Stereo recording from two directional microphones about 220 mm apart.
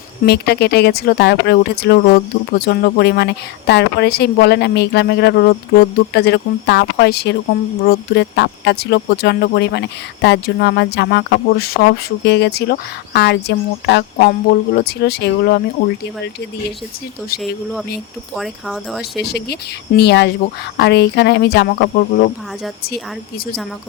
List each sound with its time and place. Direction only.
0.3 s speech: 50° left (ahead or behind)
18.3 s speech: centre (ahead or behind)
19.2 s speech: 45° left (ahead or behind)